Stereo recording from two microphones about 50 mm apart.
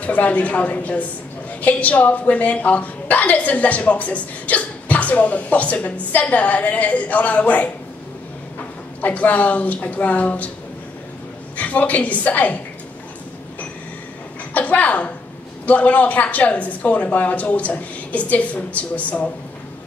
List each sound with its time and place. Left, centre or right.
0.0 s a woman's voice: left
9.0 s speech: left
11.5 s a woman's voice: left
14.5 s a woman's voice: left